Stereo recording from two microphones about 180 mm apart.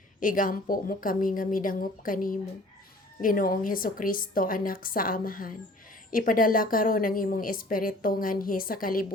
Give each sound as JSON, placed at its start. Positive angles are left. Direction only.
{"t": 0.2, "sound": "a woman's voice", "side_deg": 50}